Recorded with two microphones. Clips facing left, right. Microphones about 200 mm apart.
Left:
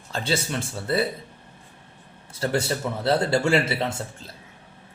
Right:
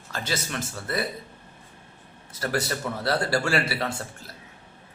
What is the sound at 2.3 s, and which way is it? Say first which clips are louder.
A man's voice: left 3 dB; 25° left (ahead or behind).